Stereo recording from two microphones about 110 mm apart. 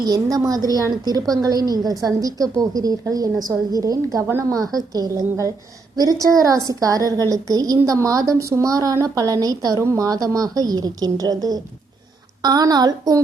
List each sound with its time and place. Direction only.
0.0 s a woman's voice: 35° right (ahead or behind)